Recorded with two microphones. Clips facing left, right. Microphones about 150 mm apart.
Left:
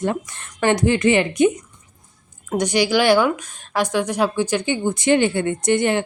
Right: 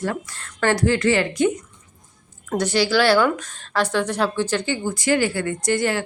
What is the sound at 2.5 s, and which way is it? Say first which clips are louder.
A woman's voice: left 1 dB; 15° left (ahead or behind).